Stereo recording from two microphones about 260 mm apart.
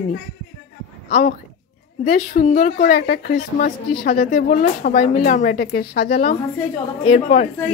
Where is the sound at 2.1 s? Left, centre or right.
Left.